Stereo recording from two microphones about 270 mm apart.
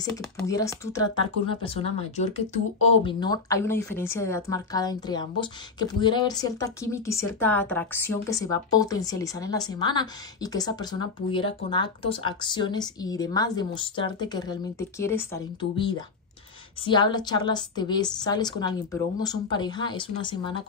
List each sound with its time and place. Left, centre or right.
0.0 s a woman's voice: centre